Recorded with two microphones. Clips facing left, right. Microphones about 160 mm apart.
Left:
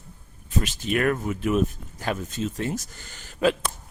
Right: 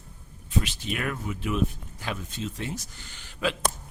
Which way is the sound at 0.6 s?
45° left (ahead or behind).